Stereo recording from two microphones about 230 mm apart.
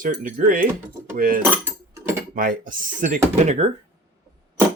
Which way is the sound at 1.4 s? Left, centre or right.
Centre.